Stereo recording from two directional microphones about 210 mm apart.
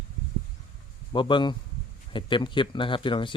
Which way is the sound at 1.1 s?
20° left (ahead or behind).